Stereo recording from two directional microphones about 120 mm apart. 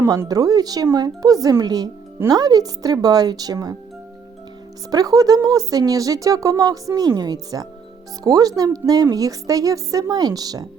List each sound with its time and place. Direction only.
0.0 s speech: 25° right (ahead or behind)
4.9 s speech: 30° right (ahead or behind)